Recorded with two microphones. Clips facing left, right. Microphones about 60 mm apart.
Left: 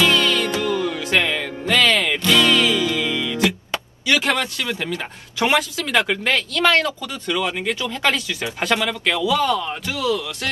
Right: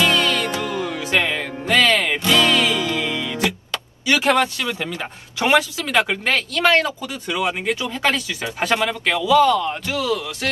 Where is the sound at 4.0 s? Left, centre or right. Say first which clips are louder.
Right 3 dB; centre.